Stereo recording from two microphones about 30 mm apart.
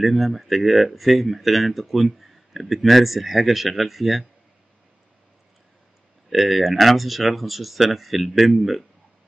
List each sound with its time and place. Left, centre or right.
0.0 s speech: centre
6.3 s speech: centre